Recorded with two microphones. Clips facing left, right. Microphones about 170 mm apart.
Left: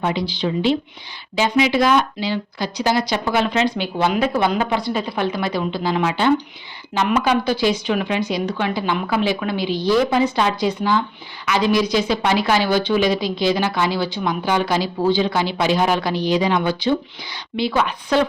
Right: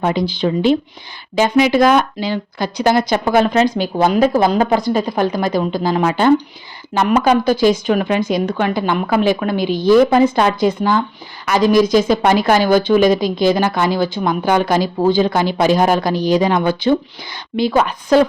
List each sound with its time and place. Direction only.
0.0 s a woman's voice: 45° right (ahead or behind)